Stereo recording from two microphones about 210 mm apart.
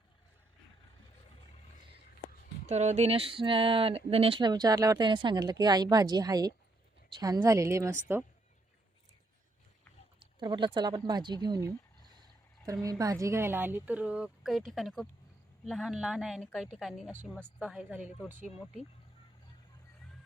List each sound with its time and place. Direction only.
2.6 s a woman's voice: 35° right (ahead or behind); by 8.2 s 10° right (ahead or behind)
10.2 s a woman's voice: 20° right (ahead or behind)